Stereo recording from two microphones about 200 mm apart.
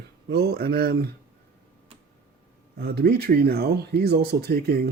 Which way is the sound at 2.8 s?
50° right (ahead or behind).